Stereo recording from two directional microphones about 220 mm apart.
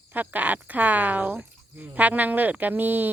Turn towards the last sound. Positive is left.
turn(degrees=-10)  # may be behind; listen again after turning